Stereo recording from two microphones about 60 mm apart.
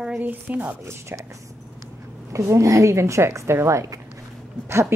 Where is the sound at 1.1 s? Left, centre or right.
Right.